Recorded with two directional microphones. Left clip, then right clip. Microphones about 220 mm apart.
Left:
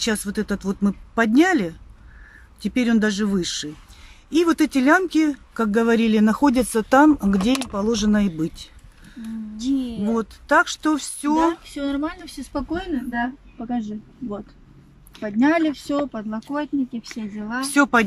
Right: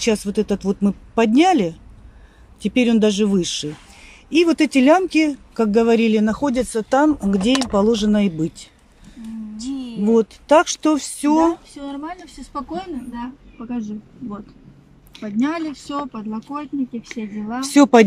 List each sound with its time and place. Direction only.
0.0 s a woman's voice: 5° right (ahead or behind)